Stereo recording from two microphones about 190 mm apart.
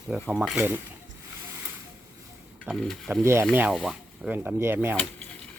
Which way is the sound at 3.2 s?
15° right (ahead or behind).